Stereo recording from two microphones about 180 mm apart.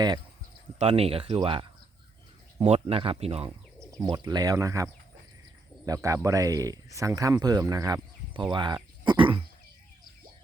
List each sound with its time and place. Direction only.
0.8 s speech: 35° right (ahead or behind)
2.6 s speech: 35° right (ahead or behind)
3.9 s speech: 20° right (ahead or behind)